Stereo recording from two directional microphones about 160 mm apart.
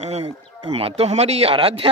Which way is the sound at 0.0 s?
40° right (ahead or behind).